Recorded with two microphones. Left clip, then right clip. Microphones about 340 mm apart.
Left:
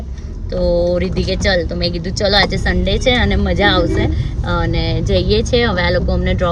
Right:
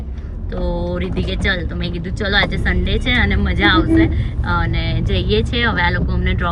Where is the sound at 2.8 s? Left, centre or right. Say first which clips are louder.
Left 4 dB; centre.